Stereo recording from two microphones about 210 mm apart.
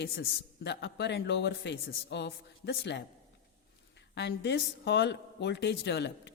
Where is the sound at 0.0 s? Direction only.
55° left (ahead or behind).